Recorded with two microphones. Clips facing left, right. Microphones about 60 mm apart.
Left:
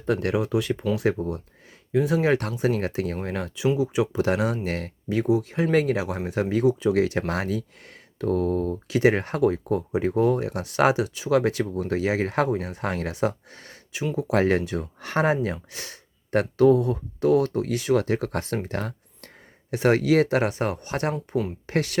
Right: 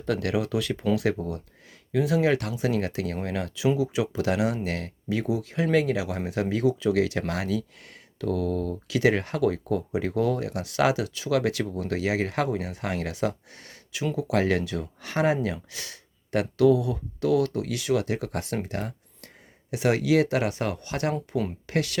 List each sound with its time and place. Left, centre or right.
0.0 s speech: left
11.9 s speech: left
18.8 s a sound: left
19.7 s speech: left